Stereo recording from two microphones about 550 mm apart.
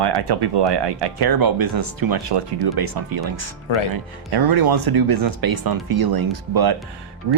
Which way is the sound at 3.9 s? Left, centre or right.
Right.